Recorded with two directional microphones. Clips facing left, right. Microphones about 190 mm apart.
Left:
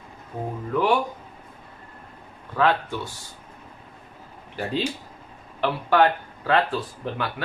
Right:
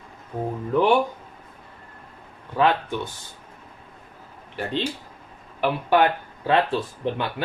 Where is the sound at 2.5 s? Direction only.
20° right (ahead or behind).